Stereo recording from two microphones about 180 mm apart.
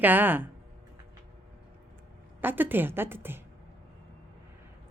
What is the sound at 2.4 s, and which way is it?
Speech, 10° right (ahead or behind).